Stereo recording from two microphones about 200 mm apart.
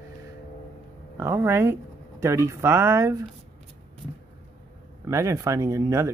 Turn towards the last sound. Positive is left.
turn(degrees=-15)  # may be behind; listen again after turning